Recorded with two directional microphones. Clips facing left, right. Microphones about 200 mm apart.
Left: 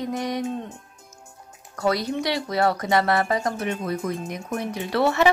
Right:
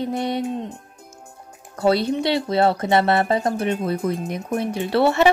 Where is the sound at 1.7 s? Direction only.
30° right (ahead or behind).